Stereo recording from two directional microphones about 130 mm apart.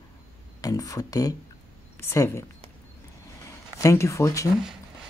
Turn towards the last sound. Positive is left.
turn(degrees=25)  # may be behind; listen again after turning